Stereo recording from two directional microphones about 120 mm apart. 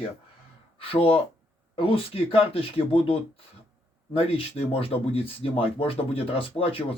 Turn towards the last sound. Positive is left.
turn(degrees=50)  # may be behind; listen again after turning